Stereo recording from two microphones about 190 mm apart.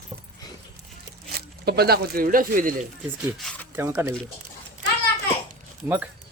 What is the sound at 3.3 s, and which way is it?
Speech, 5° left (ahead or behind).